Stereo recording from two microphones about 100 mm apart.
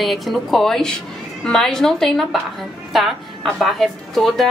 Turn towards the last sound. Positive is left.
turn(degrees=5)  # may be behind; listen again after turning